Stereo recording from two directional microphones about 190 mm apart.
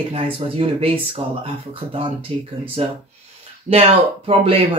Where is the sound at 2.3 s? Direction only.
30° right (ahead or behind).